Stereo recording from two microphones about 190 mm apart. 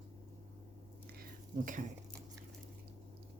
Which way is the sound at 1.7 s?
45° right (ahead or behind).